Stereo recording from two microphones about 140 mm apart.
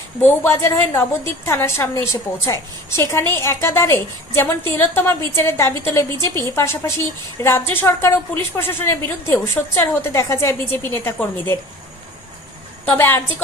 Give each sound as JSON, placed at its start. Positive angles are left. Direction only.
{"t": 0.2, "sound": "a woman's voice", "side_deg": 15}
{"t": 12.8, "sound": "a woman's voice", "side_deg": 15}